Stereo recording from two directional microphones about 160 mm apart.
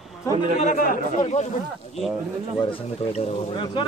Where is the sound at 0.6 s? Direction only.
60° left (ahead or behind).